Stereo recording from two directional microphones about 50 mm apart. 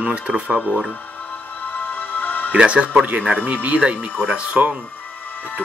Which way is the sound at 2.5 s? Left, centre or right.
Right.